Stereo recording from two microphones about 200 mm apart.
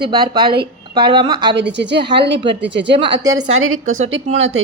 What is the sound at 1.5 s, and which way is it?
A woman's voice, 60° right (ahead or behind).